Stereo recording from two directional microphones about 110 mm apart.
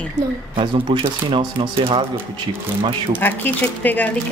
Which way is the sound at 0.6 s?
50° right (ahead or behind).